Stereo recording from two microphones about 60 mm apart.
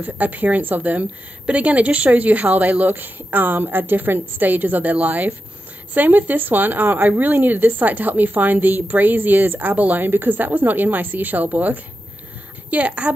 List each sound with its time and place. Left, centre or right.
0.0 s a woman's voice: right